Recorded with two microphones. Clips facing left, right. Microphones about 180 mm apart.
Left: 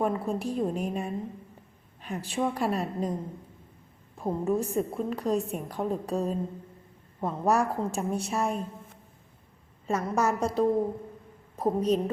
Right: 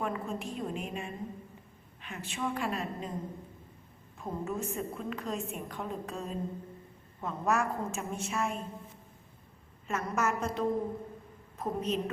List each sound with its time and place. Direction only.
0.0 s a woman's voice: 35° left (ahead or behind)
4.2 s a woman's voice: 35° left (ahead or behind)
9.8 s a woman's voice: 35° left (ahead or behind)